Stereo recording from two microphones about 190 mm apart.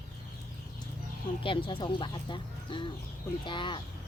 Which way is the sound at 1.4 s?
25° left (ahead or behind).